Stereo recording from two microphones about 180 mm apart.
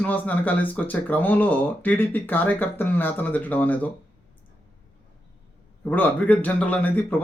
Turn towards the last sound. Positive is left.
turn(degrees=10)  # may be behind; listen again after turning